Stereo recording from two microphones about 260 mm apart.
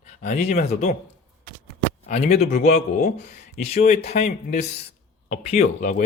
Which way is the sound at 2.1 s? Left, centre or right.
Left.